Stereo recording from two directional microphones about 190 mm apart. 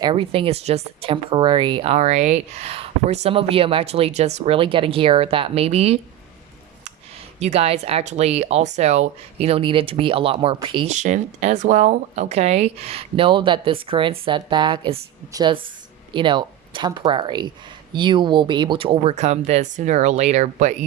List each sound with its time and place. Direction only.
0.0 s speech: 25° right (ahead or behind)
7.3 s speech: 35° right (ahead or behind)
10.9 s speech: 40° right (ahead or behind)